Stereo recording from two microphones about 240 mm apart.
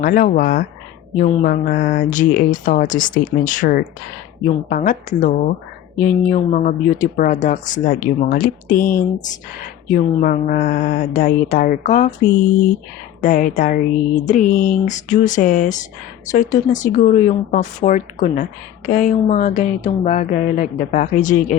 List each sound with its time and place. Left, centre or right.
0.0 s speech: left
13.2 s speech: left